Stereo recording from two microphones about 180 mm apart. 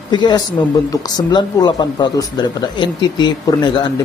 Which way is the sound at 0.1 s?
25° left (ahead or behind).